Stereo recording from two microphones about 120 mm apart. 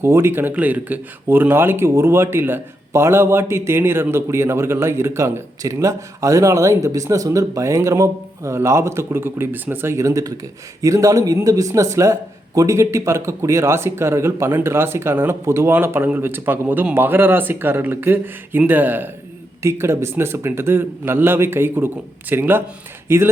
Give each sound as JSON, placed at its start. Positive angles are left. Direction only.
{"t": 0.0, "sound": "speech", "side_deg": -20}